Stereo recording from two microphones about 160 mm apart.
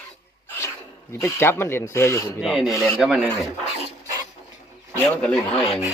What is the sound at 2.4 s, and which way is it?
Rub, centre (ahead or behind).